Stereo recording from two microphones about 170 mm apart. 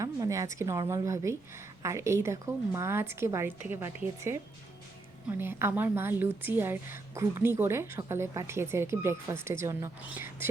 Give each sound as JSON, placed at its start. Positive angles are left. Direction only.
{"t": 0.0, "sound": "a sound", "side_deg": -20}
{"t": 0.5, "sound": "a woman's voice", "side_deg": -20}
{"t": 5.4, "sound": "a woman's voice", "side_deg": -15}